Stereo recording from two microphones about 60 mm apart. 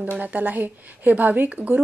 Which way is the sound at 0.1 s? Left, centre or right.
Right.